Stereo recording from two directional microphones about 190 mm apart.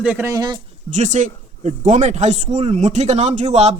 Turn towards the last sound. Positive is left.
turn(degrees=-35)  # may be behind; listen again after turning